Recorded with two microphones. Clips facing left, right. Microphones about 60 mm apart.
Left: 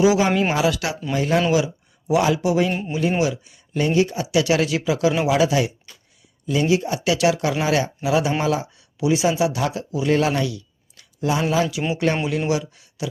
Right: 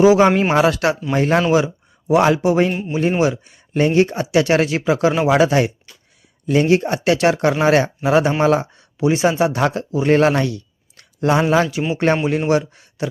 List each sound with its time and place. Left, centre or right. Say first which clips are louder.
0.0 s speech: right 5 dB; right
1.5 s a sound: right 4 dB; right
2.2 s speech: right 4 dB; right